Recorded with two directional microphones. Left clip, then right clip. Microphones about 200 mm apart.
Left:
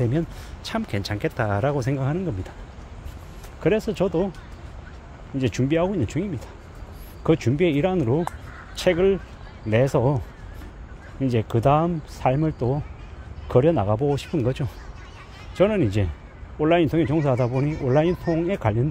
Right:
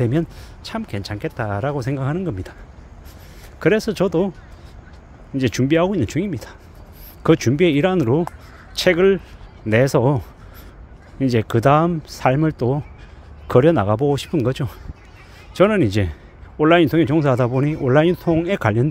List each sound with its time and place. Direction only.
0.7 s speech: 10° right (ahead or behind)
3.6 s speech: 30° right (ahead or behind)
5.4 s speech: 35° right (ahead or behind)